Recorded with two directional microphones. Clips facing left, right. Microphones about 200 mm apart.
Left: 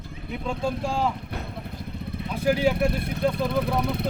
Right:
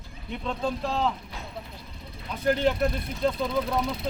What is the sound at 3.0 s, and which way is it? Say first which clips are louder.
Speech: left 2 dB; 60° left (ahead or behind).